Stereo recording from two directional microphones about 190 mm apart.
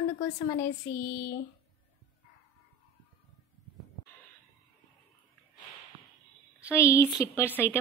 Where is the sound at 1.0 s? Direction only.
55° left (ahead or behind).